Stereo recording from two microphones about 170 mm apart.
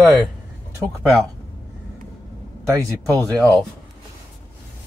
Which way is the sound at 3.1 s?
10° left (ahead or behind).